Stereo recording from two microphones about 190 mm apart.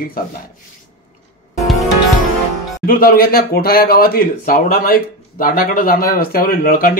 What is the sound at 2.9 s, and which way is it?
Speech, 50° left (ahead or behind).